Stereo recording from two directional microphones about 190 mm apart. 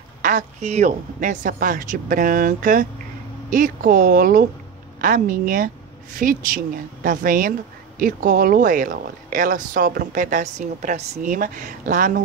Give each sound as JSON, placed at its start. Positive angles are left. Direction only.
{"t": 0.2, "sound": "speech", "side_deg": -40}